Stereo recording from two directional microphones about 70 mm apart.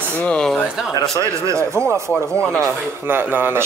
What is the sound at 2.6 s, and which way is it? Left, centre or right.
Speech, right.